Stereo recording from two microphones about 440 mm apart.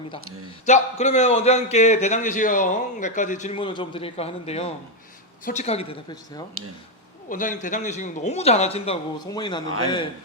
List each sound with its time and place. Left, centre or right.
0.6 s a man's voice: centre